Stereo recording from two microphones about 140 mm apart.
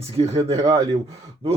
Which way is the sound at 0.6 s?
30° right (ahead or behind).